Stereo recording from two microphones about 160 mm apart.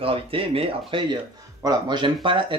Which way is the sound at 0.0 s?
35° right (ahead or behind).